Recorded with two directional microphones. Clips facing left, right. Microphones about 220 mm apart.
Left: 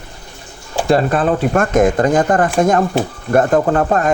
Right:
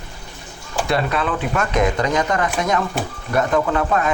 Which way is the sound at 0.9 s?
45° left (ahead or behind).